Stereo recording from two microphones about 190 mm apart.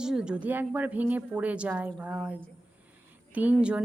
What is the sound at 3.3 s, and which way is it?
Speech, 5° right (ahead or behind).